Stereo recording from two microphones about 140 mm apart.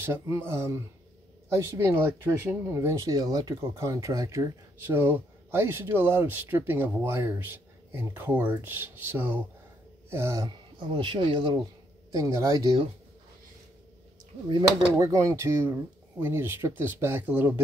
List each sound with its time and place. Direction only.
0.0 s speech: 15° right (ahead or behind); by 11.6 s 35° right (ahead or behind)
12.1 s speech: 20° right (ahead or behind)
15.0 s speech: 20° right (ahead or behind)